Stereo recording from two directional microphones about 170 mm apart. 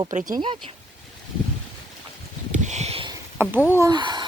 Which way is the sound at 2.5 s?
40° right (ahead or behind).